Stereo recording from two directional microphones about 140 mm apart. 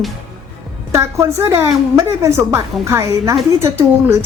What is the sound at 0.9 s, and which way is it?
A woman's voice, 20° right (ahead or behind).